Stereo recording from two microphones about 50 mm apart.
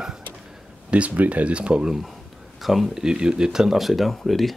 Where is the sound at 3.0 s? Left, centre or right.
Centre.